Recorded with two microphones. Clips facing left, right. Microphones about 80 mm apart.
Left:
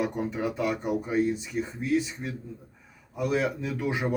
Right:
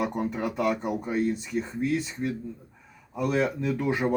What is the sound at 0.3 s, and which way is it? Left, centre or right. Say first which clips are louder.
Speech: right 2 dB; centre.